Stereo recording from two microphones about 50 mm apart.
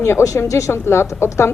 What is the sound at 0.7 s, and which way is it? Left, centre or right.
Speech, left.